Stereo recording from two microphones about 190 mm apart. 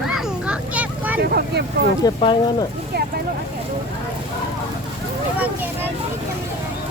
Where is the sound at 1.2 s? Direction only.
55° right (ahead or behind).